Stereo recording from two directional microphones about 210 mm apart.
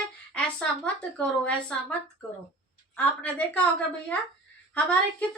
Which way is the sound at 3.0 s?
10° left (ahead or behind).